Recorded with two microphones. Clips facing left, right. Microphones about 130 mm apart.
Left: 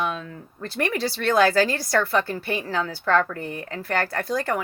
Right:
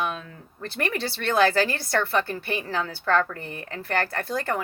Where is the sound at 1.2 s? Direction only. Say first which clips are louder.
Left 2 dB; 25° right (ahead or behind).